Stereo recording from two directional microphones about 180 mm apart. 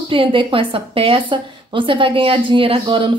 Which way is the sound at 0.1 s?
30° right (ahead or behind).